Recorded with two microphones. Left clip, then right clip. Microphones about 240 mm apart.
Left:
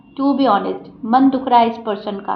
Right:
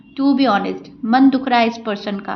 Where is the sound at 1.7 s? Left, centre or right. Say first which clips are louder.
Left 1 dB; right.